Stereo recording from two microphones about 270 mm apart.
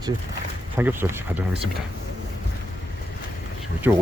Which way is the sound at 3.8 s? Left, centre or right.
Centre.